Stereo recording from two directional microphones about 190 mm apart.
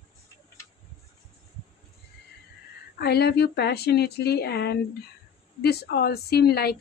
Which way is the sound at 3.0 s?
55° left (ahead or behind).